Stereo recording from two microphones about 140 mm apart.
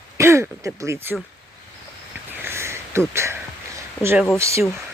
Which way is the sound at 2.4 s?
20° right (ahead or behind).